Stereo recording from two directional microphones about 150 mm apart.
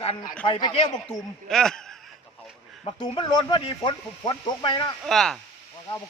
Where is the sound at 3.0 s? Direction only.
30° left (ahead or behind).